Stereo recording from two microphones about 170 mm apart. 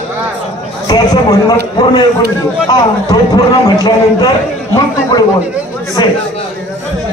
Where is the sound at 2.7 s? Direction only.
20° left (ahead or behind).